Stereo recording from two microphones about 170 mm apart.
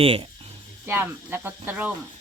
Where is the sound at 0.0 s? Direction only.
35° right (ahead or behind).